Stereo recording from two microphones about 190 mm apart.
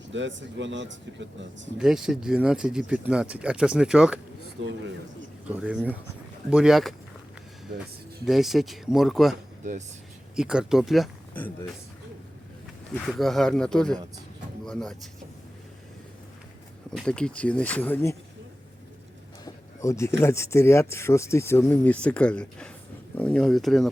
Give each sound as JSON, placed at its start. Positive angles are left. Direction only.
{"t": 0.1, "sound": "speech", "side_deg": -75}
{"t": 1.8, "sound": "speech", "side_deg": -5}
{"t": 4.6, "sound": "speech", "side_deg": -70}
{"t": 5.5, "sound": "speech", "side_deg": -5}
{"t": 8.2, "sound": "speech", "side_deg": 0}
{"t": 12.9, "sound": "speech", "side_deg": 5}
{"t": 16.9, "sound": "speech", "side_deg": 5}
{"t": 19.5, "sound": "a sound", "side_deg": 15}
{"t": 20.2, "sound": "speech", "side_deg": 15}